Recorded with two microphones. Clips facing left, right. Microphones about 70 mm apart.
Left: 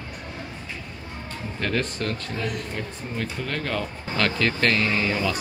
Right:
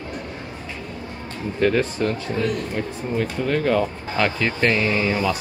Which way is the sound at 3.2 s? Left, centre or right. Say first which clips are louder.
Right 8 dB; centre.